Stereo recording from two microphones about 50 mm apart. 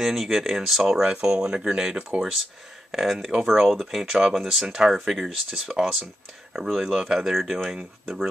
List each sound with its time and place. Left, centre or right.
0.0 s speech: centre
1.0 s speech: centre
2.9 s speech: centre